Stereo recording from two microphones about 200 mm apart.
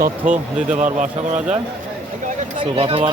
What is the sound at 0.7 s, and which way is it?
Speech, 40° right (ahead or behind).